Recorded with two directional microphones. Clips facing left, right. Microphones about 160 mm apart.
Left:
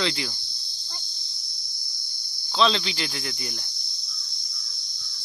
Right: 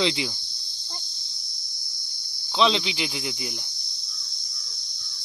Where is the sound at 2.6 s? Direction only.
15° right (ahead or behind).